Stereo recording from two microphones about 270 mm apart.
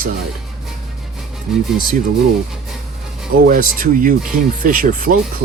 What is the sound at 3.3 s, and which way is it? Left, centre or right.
Speech, right.